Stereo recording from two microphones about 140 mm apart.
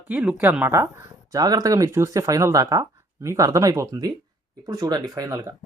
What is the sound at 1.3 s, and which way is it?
Speech, 25° right (ahead or behind).